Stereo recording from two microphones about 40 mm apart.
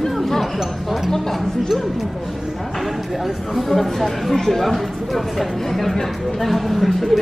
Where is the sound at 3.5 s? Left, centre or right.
Centre.